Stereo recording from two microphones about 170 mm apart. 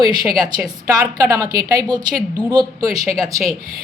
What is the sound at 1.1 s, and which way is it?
A woman's voice, 20° right (ahead or behind).